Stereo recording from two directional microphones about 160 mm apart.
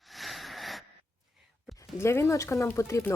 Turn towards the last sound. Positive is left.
turn(degrees=15)  # may be behind; listen again after turning